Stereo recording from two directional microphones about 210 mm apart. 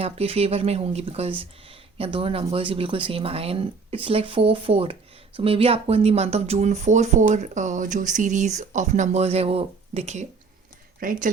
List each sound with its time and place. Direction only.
0.0 s speech: 30° right (ahead or behind)